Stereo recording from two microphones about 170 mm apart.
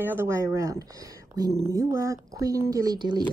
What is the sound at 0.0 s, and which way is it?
Speech, 15° right (ahead or behind).